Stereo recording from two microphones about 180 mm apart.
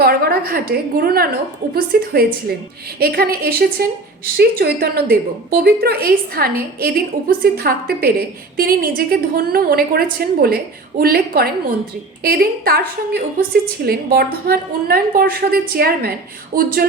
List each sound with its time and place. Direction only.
0.0 s a woman's voice: 60° right (ahead or behind)